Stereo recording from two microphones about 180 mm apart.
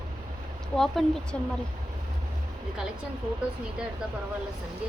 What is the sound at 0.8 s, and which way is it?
Speech, centre (ahead or behind).